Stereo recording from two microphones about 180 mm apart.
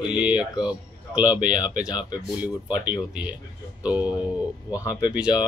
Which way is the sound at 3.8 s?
5° right (ahead or behind).